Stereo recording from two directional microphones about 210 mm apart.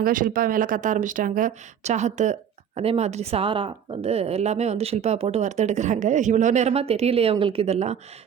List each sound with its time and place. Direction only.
0.0 s speech: 40° right (ahead or behind)